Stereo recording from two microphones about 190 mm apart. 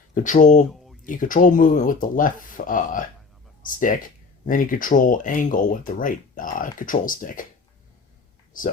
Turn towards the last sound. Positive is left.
turn(degrees=45)  # may be behind; listen again after turning